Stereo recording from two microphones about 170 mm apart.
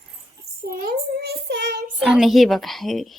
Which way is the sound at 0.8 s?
65° right (ahead or behind).